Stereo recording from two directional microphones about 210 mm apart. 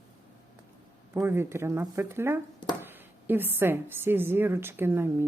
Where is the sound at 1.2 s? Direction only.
10° right (ahead or behind).